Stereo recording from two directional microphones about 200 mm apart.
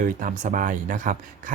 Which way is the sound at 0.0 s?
40° right (ahead or behind).